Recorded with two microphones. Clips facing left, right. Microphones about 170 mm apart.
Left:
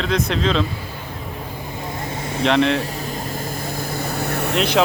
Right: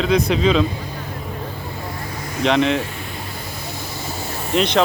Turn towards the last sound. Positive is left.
turn(degrees=5)  # may be behind; listen again after turning